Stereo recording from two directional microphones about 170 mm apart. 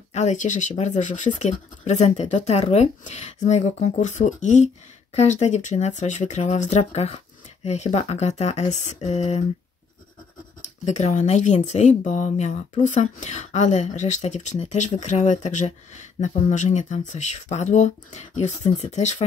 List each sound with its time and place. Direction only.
0.1 s speech: 45° left (ahead or behind)
11.0 s speech: 40° left (ahead or behind)